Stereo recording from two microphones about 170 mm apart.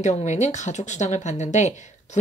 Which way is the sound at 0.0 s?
45° left (ahead or behind).